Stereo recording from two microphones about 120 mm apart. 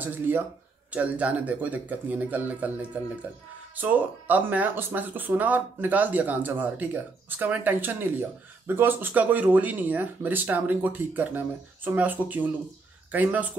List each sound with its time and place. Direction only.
0.0 s speech: 15° right (ahead or behind)